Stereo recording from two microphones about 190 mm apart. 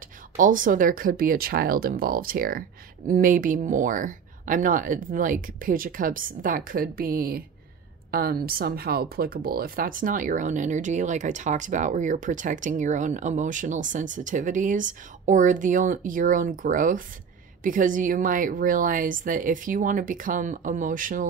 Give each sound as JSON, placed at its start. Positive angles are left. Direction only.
{"t": 0.4, "sound": "speech", "side_deg": -45}